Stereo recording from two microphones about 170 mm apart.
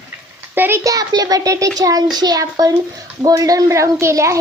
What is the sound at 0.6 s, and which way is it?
A child's voice, 15° right (ahead or behind).